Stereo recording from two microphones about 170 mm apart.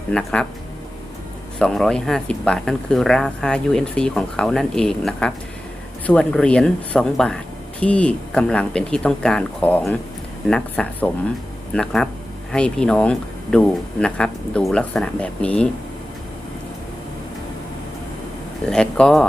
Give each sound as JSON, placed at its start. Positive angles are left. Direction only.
{"t": 0.1, "sound": "speech", "side_deg": 5}
{"t": 1.5, "sound": "speech", "side_deg": 5}
{"t": 18.7, "sound": "speech", "side_deg": 5}